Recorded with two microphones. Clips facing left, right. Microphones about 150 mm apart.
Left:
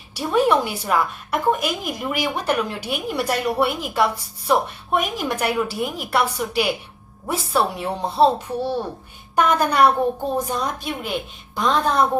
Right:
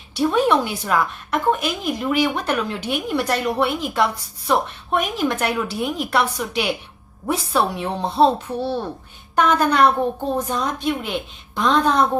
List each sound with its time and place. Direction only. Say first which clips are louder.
0.1 s a woman's voice: right 1 dB; 10° left (ahead or behind)
9.3 s a woman's voice: right 1 dB; 10° left (ahead or behind)